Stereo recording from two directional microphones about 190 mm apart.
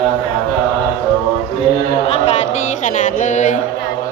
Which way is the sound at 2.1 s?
35° left (ahead or behind).